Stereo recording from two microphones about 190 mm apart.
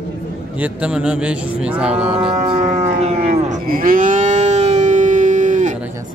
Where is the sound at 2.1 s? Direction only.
30° right (ahead or behind).